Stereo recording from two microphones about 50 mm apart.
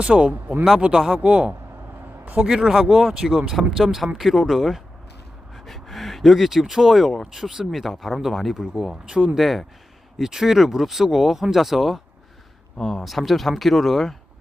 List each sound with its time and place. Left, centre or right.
0.0 s speech: right
0.9 s speech: centre
1.2 s speech: right
2.2 s a man's voice: right
2.5 s speech: centre
9.0 s speech: centre
9.4 s speech: centre
12.8 s speech: centre